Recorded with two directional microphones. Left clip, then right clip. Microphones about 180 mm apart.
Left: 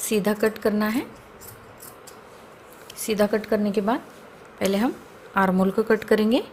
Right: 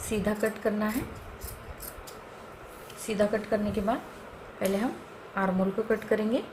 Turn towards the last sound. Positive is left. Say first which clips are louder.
# left 7 dB
turn(degrees=55)  # may be behind; listen again after turning